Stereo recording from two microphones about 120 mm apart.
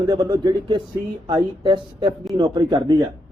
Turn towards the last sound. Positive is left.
turn(degrees=-35)  # may be behind; listen again after turning